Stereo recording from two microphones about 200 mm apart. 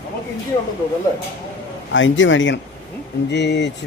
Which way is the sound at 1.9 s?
70° left (ahead or behind).